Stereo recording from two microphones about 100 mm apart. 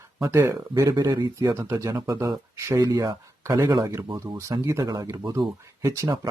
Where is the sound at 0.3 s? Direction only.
25° right (ahead or behind).